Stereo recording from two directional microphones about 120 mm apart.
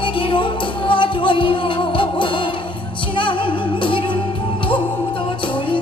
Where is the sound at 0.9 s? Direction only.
45° left (ahead or behind).